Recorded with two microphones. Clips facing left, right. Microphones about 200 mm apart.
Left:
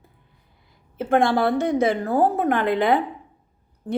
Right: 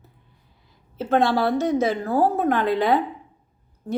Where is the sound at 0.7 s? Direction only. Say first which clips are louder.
Left 1 dB; 55° left (ahead or behind).